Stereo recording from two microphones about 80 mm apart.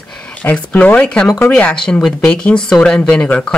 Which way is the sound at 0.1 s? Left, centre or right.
Centre.